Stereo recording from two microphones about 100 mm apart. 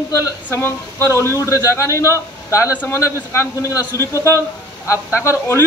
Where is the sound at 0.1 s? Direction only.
30° left (ahead or behind).